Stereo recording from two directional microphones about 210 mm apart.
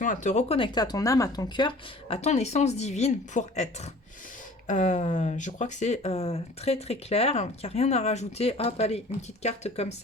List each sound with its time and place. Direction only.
0.0 s speech: 35° left (ahead or behind)